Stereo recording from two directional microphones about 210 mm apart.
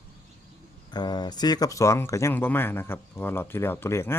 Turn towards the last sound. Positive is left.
turn(degrees=10)  # may be behind; listen again after turning